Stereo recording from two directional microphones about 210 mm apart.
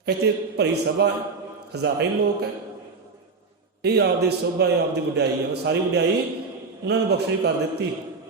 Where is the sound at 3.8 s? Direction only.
50° right (ahead or behind).